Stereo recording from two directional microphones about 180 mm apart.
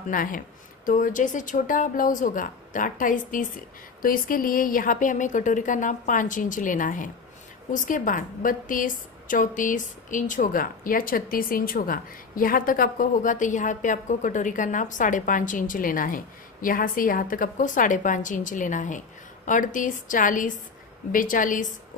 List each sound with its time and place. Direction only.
0.1 s a woman's voice: 50° left (ahead or behind)